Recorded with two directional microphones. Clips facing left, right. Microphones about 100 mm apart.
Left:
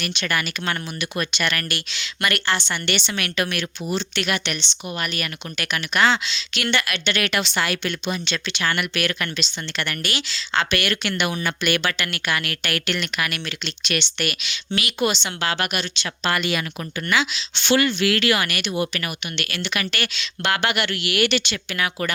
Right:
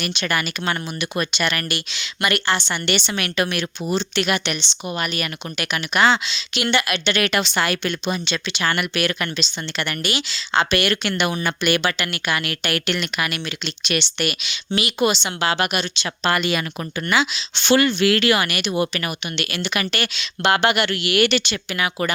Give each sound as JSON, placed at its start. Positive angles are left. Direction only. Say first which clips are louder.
{"t": 0.2, "sound": "a woman's voice", "louder": "right 1 dB", "side_deg": -20}
{"t": 1.7, "sound": "speech", "louder": "right 2 dB", "side_deg": -5}
{"t": 3.1, "sound": "a woman's voice", "louder": "right 2 dB", "side_deg": -25}
{"t": 4.2, "sound": "speech", "louder": "right 3 dB", "side_deg": -15}
{"t": 7.1, "sound": "a woman's voice", "louder": "right 3 dB", "side_deg": -30}
{"t": 10.0, "sound": "speech", "louder": "right 3 dB", "side_deg": -10}
{"t": 10.7, "sound": "a woman's voice", "louder": "right 3 dB", "side_deg": -30}
{"t": 11.9, "sound": "a woman's voice", "louder": "right 1 dB", "side_deg": -10}
{"t": 16.2, "sound": "speech", "louder": "right 2 dB", "side_deg": -35}
{"t": 18.4, "sound": "speech", "louder": "right 2 dB", "side_deg": -15}
{"t": 18.7, "sound": "a woman's voice", "louder": "right 3 dB", "side_deg": -30}